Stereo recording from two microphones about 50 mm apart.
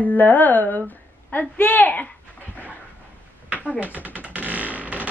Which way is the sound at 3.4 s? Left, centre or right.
Right.